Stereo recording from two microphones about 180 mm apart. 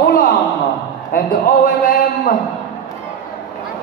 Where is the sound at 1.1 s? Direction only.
50° left (ahead or behind).